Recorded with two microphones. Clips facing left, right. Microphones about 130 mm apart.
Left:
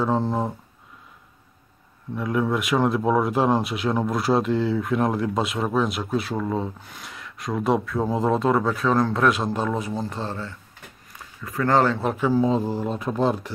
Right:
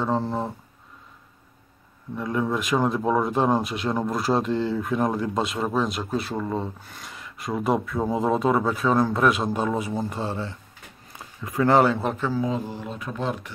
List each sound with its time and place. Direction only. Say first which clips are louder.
0.0 s speech: left 2 dB; centre (ahead or behind)
2.1 s speech: left 2 dB; centre (ahead or behind)
11.1 s speech: right 3 dB; 20° right (ahead or behind)
11.9 s speech: left 1 dB; centre (ahead or behind)
12.2 s speech: left 5 dB; 25° left (ahead or behind)